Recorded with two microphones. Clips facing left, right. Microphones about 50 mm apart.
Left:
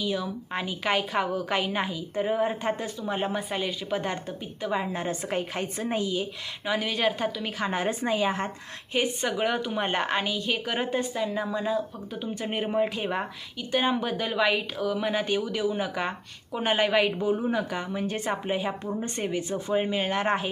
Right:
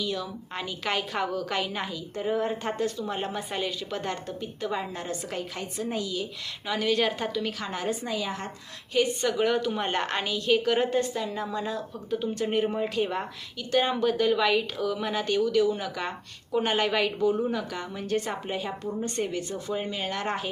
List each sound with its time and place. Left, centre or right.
0.0 s a woman's voice: centre; by 6.2 s left
6.7 s a woman's voice: centre
7.4 s a woman's voice: left
8.9 s a woman's voice: left